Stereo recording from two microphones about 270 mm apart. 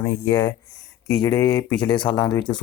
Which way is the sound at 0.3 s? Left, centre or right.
Centre.